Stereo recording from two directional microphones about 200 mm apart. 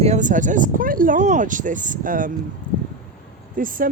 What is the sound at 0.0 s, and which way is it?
Speech, 35° right (ahead or behind).